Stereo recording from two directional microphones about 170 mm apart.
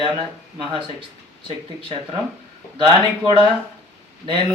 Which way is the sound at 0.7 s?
30° right (ahead or behind).